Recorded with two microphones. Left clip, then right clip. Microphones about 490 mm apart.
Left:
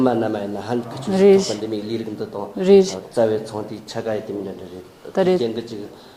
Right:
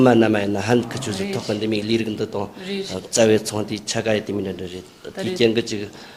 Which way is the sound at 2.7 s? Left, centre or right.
Left.